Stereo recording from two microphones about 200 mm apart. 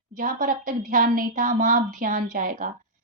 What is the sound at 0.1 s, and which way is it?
A woman's voice, 40° right (ahead or behind).